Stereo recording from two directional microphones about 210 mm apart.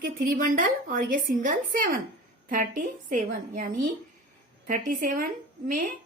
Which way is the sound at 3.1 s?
40° right (ahead or behind).